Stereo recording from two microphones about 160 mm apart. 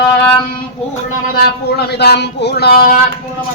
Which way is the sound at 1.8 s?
90° left.